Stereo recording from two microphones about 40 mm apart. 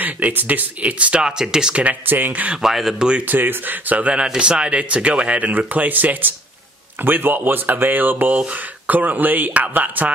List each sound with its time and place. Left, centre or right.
0.0 s speech: right
0.8 s speech: right
1.2 s speech: centre
2.0 s speech: right
2.6 s speech: centre
3.0 s speech: right
3.3 s speech: right
4.4 s speech: right
5.6 s speech: right